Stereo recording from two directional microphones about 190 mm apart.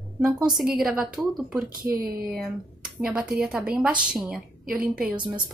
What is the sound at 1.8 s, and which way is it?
Speech, 45° right (ahead or behind).